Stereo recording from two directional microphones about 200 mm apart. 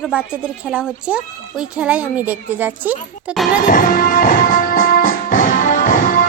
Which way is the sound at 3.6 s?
45° left (ahead or behind).